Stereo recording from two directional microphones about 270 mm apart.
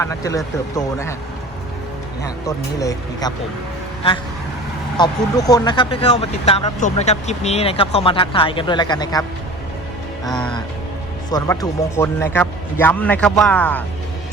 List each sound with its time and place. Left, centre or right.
0.0 s speech: centre
2.2 s speech: centre
4.9 s speech: centre
10.2 s a man's voice: centre
11.3 s a man's voice: centre